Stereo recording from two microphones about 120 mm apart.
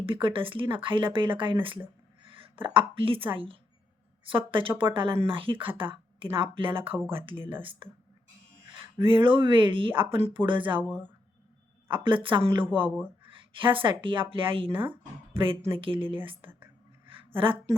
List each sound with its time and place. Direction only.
0.0 s speech: 45° right (ahead or behind)
2.2 s a sound: 45° right (ahead or behind)
2.7 s speech: 50° right (ahead or behind)
4.3 s speech: 45° right (ahead or behind)
7.3 s speech: 15° right (ahead or behind)
7.6 s speech: 45° right (ahead or behind)
9.0 s speech: 45° right (ahead or behind)
10.8 s speech: 15° right (ahead or behind)
11.9 s a woman's voice: 45° right (ahead or behind)
17.1 s a sound: 50° right (ahead or behind)